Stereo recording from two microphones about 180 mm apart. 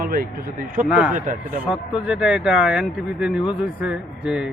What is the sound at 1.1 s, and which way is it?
Speech, 45° right (ahead or behind).